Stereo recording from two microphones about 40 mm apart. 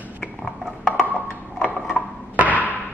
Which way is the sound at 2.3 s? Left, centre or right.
Right.